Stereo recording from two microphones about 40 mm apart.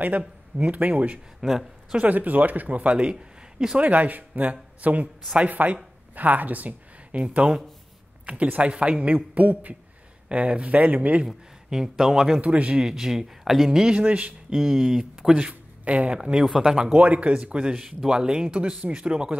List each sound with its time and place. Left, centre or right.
0.6 s a man's voice: right
1.4 s speech: centre
2.0 s a man's voice: right
3.8 s a man's voice: right
7.2 s a man's voice: right
8.5 s a man's voice: right
11.2 s speech: centre
12.4 s a man's voice: right
12.7 s speech: centre
13.9 s a man's voice: right
14.5 s speech: centre
15.8 s speech: right
16.2 s a man's voice: right
17.0 s a man's voice: right